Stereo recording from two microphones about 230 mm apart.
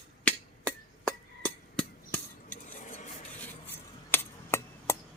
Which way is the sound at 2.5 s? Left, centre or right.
Left.